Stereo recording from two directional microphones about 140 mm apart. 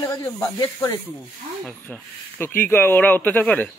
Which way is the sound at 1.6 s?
5° left (ahead or behind).